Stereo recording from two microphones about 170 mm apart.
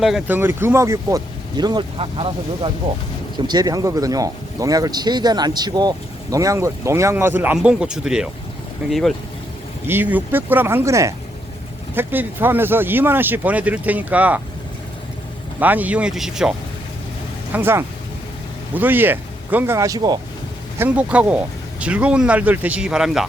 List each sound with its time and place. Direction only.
0.0 s a man's voice: 5° right (ahead or behind)
9.8 s speech: 10° right (ahead or behind)
15.6 s a man's voice: 10° right (ahead or behind)
20.7 s speech: 10° right (ahead or behind)